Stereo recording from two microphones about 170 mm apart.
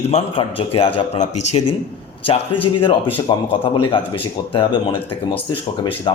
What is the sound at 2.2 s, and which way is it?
A man's voice, 30° left (ahead or behind).